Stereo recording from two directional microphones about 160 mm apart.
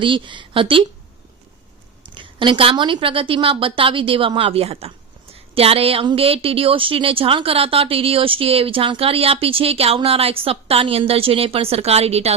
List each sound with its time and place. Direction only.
0.0 s a woman's voice: 30° right (ahead or behind)
2.0 s a woman's voice: 30° right (ahead or behind)